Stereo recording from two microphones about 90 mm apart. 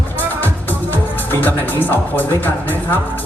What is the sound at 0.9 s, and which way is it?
Speech, 20° left (ahead or behind).